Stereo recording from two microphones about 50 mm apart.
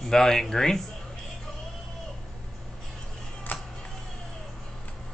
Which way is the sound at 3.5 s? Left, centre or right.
Left.